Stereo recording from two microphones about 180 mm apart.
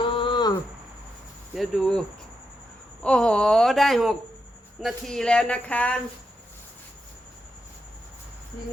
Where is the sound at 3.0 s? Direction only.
5° left (ahead or behind).